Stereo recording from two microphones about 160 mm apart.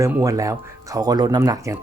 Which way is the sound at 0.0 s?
20° right (ahead or behind).